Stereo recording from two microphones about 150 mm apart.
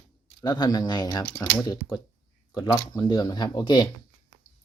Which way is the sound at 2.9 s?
25° left (ahead or behind).